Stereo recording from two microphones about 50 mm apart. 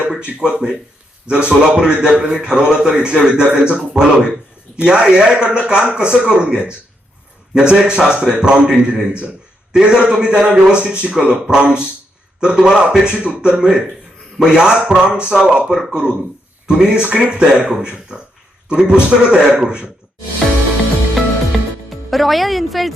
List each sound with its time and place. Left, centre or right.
0.2 s a man's voice: right
1.8 s a man's voice: centre
21.8 s a woman's voice: centre